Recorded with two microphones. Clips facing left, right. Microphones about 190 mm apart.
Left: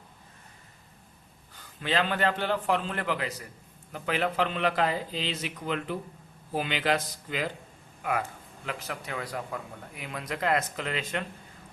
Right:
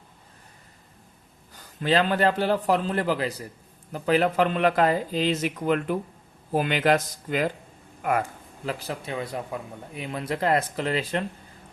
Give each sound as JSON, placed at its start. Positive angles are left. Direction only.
{"t": 1.5, "sound": "a man's voice", "side_deg": -40}
{"t": 8.6, "sound": "speech", "side_deg": -30}